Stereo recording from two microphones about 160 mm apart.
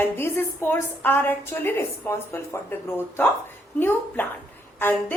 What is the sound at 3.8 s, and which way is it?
A woman's voice, 10° left (ahead or behind).